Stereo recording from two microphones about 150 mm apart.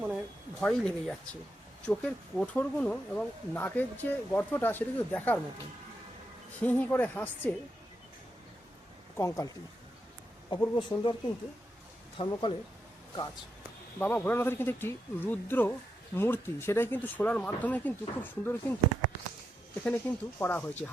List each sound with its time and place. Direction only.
0.6 s speech: 5° left (ahead or behind)
6.6 s speech: 10° left (ahead or behind)
9.1 s speech: 20° left (ahead or behind)
10.5 s speech: 30° left (ahead or behind)
14.0 s speech: 10° left (ahead or behind)
19.8 s speech: 10° left (ahead or behind)